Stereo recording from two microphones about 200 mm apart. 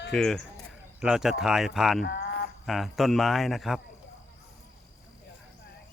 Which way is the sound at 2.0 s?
55° left (ahead or behind).